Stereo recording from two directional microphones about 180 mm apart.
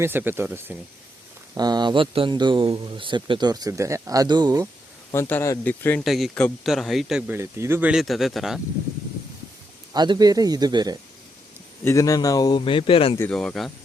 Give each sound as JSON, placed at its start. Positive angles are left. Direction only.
{"t": 0.0, "sound": "speech", "side_deg": -10}
{"t": 1.5, "sound": "speech", "side_deg": -20}
{"t": 5.1, "sound": "speech", "side_deg": 15}
{"t": 9.9, "sound": "speech", "side_deg": -25}
{"t": 11.9, "sound": "speech", "side_deg": 20}
{"t": 13.1, "sound": "speech", "side_deg": 5}